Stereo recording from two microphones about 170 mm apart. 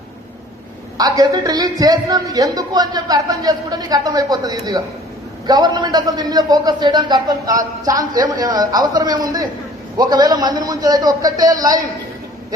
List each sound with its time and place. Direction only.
0.9 s a man's voice: 20° right (ahead or behind)